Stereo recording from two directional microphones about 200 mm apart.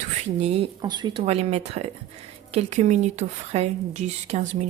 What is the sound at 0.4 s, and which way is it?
Speech, 30° right (ahead or behind).